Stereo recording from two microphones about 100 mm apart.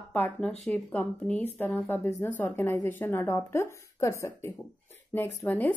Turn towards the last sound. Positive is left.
turn(degrees=20)  # may be behind; listen again after turning